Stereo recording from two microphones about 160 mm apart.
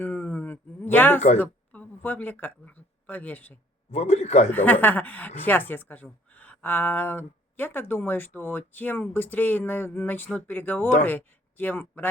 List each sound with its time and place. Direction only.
0.0 s a sound: 10° left (ahead or behind)
1.4 s speech: 10° left (ahead or behind)
3.9 s speech: 40° left (ahead or behind)
4.5 s speech: 10° left (ahead or behind)